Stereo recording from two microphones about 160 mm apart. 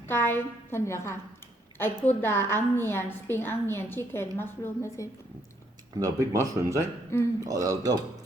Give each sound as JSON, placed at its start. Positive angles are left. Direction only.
{"t": 0.1, "sound": "a woman's voice", "side_deg": 15}
{"t": 6.0, "sound": "speech", "side_deg": -20}
{"t": 7.1, "sound": "a woman's voice", "side_deg": 15}
{"t": 7.4, "sound": "speech", "side_deg": -20}